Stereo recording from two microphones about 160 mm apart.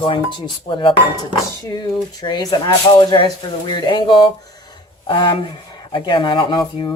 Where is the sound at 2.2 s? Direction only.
25° left (ahead or behind).